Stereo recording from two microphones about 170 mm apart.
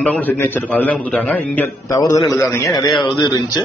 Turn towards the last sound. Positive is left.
turn(degrees=25)  # may be behind; listen again after turning